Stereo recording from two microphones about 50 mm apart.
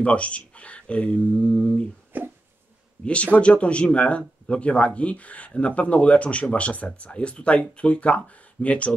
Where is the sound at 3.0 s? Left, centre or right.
Left.